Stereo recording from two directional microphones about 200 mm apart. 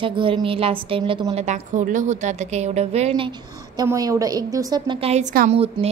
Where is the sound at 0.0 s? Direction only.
25° right (ahead or behind).